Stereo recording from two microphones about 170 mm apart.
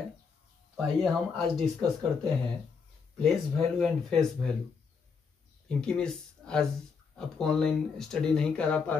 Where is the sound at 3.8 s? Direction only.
5° left (ahead or behind).